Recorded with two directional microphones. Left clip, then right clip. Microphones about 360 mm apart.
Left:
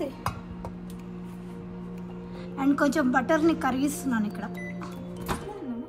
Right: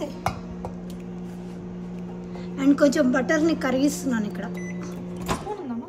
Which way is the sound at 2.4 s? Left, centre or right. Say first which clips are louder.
Right 5 dB; centre.